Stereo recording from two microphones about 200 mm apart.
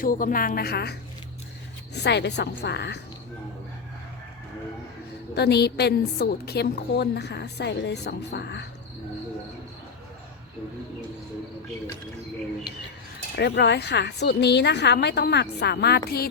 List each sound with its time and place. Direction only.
0.0 s a woman's voice: 45° left (ahead or behind)
2.0 s a woman's voice: 60° left (ahead or behind)
5.3 s a woman's voice: 55° left (ahead or behind)
13.3 s a woman's voice: 55° left (ahead or behind)